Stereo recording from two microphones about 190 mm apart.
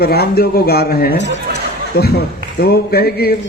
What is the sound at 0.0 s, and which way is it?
A man's voice, 55° left (ahead or behind).